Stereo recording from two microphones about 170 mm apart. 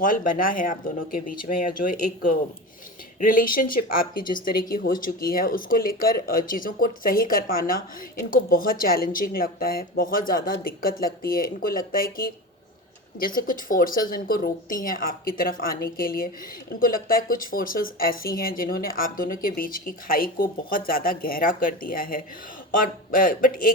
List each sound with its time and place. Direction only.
0.0 s speech: 55° left (ahead or behind)